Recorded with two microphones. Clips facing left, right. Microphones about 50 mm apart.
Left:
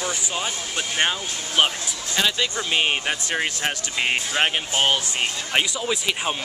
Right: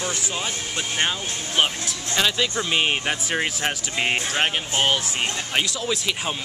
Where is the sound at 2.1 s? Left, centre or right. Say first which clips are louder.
Right 1 dB; centre.